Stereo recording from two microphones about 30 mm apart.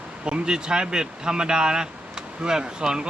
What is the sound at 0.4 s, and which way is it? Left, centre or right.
Speech, right.